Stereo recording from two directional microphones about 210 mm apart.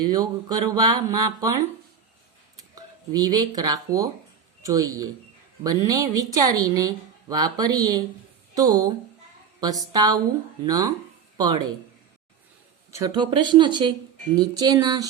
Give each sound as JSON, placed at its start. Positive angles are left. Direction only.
{"t": 0.1, "sound": "speech", "side_deg": -20}
{"t": 2.7, "sound": "a woman's voice", "side_deg": -20}
{"t": 13.0, "sound": "speech", "side_deg": -20}